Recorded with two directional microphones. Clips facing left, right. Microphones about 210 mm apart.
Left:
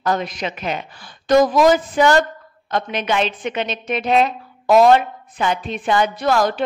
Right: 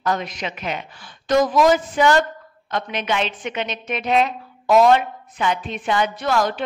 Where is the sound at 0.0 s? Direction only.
35° left (ahead or behind).